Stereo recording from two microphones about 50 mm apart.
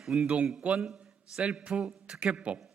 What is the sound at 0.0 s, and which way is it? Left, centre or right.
Speech, centre.